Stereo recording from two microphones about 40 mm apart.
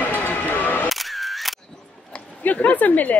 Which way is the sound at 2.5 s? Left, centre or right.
Left.